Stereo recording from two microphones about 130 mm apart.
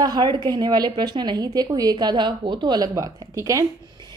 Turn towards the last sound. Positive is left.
turn(degrees=-25)  # may be behind; listen again after turning